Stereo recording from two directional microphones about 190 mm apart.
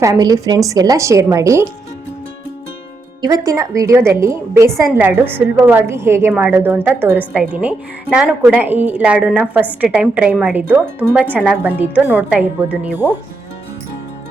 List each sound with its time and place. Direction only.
0.0 s speech: 20° right (ahead or behind)
3.2 s speech: 20° right (ahead or behind)